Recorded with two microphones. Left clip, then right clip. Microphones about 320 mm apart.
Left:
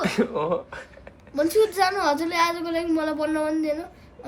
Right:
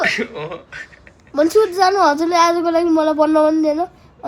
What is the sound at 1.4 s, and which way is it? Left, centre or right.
A woman's voice, centre.